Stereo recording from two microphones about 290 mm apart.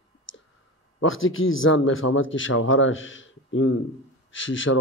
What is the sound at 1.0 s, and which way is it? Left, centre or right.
Speech, left.